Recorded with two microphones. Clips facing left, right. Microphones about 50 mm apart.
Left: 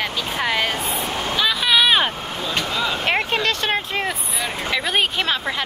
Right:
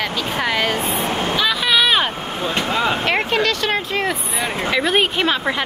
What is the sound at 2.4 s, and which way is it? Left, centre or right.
Speech, right.